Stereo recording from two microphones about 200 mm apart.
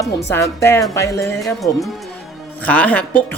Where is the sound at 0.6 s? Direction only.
15° left (ahead or behind).